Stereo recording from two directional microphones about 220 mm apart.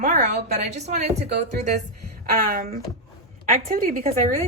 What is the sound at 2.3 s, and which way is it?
A woman's voice, 40° right (ahead or behind).